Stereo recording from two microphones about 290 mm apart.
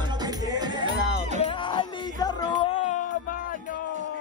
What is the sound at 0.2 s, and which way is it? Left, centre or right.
Music, centre.